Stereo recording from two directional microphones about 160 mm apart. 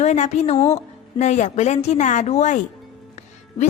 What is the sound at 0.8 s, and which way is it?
A woman's voice, 45° left (ahead or behind).